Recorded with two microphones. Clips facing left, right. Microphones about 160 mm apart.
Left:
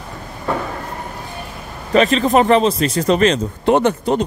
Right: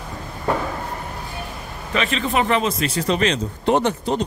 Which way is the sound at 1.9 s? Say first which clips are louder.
Left 9 dB; 40° left (ahead or behind).